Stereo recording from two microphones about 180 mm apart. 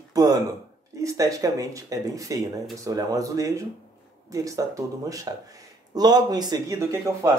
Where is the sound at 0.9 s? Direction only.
15° right (ahead or behind).